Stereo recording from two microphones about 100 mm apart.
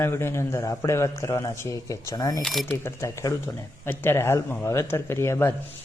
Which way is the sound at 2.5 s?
Centre (ahead or behind).